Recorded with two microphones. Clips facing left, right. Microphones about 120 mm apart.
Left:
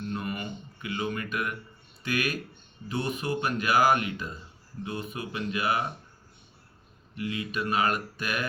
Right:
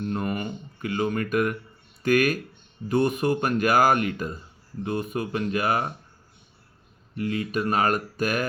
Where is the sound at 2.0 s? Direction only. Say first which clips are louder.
Right 9 dB; 45° right (ahead or behind).